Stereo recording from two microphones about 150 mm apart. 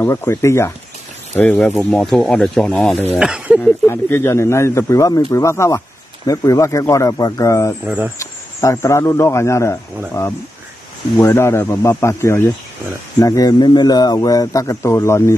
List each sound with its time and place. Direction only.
0.0 s speech: 15° left (ahead or behind); by 3.5 s 5° right (ahead or behind)
3.8 s a man's voice: 15° left (ahead or behind)
7.8 s speech: 10° right (ahead or behind)
8.2 s speech: 20° left (ahead or behind)
11.1 s a man's voice: 15° left (ahead or behind)